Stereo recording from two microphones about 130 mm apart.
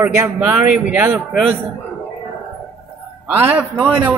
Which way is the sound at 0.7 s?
10° right (ahead or behind).